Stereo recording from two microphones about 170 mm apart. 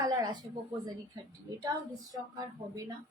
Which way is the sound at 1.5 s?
20° right (ahead or behind).